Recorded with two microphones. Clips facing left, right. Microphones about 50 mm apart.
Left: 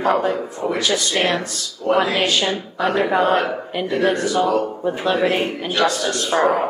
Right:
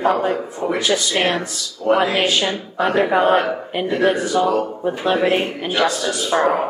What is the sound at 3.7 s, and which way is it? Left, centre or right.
A man's voice, centre.